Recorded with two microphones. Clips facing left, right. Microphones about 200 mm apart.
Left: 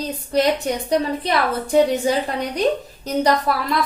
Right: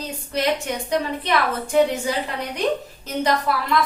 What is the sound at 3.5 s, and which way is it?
Speech, 40° left (ahead or behind).